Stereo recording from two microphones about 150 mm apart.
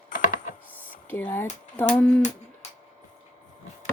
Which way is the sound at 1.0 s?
10° left (ahead or behind).